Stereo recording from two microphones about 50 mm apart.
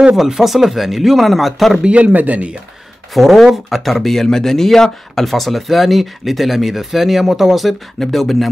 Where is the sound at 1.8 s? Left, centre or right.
Right.